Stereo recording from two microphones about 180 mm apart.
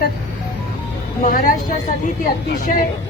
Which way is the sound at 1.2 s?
45° left (ahead or behind).